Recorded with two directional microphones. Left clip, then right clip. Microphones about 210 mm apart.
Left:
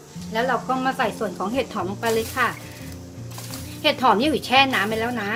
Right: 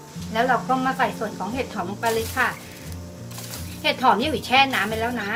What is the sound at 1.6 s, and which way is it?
Speech, 45° left (ahead or behind).